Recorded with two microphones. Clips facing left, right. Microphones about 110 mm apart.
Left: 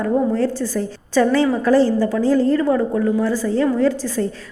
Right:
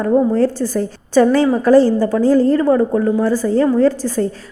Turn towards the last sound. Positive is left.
turn(degrees=-40)  # may be behind; listen again after turning